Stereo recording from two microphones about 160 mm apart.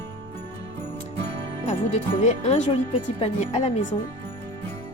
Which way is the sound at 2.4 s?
45° left (ahead or behind).